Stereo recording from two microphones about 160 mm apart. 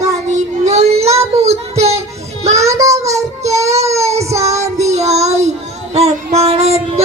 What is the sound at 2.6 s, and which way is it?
Child singing, 20° right (ahead or behind).